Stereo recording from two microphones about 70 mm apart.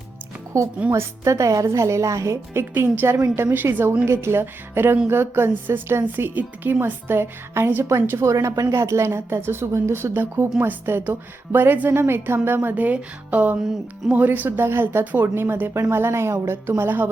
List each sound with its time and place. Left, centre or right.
0.5 s a woman's voice: right
4.0 s a woman's voice: right
8.2 s a woman's voice: right